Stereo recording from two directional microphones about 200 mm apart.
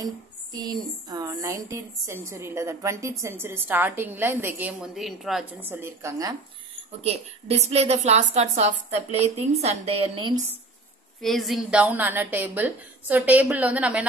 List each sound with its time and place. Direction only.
0.0 s speech: 20° right (ahead or behind)
7.0 s a woman's voice: 30° right (ahead or behind)
11.1 s speech: centre (ahead or behind)